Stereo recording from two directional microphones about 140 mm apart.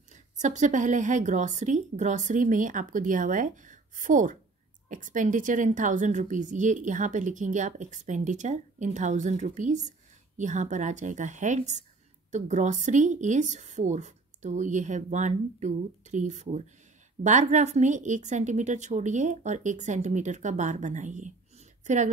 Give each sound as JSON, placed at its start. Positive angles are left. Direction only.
{"t": 0.1, "sound": "a woman's voice", "side_deg": -60}